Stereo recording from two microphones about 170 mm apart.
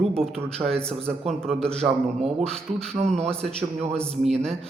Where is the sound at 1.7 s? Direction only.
35° right (ahead or behind).